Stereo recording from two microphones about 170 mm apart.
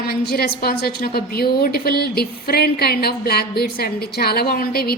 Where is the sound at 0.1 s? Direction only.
65° left (ahead or behind).